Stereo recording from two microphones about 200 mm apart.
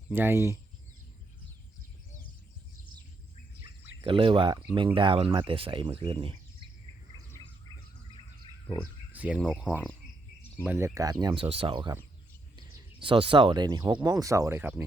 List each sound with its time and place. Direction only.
0.1 s speech: 10° right (ahead or behind)
4.0 s speech: 25° right (ahead or behind)
9.1 s speech: 5° right (ahead or behind)